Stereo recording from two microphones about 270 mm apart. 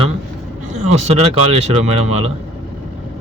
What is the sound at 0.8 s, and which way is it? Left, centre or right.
A man's voice, right.